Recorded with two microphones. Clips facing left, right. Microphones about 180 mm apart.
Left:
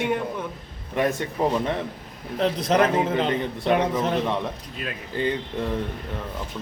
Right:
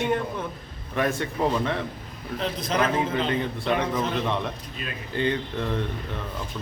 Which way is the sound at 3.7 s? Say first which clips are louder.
Left 4 dB; 40° left (ahead or behind).